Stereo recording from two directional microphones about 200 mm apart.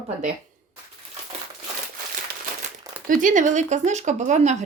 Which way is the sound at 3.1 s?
40° right (ahead or behind).